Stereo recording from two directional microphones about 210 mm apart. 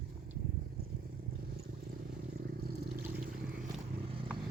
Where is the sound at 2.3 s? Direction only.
45° right (ahead or behind).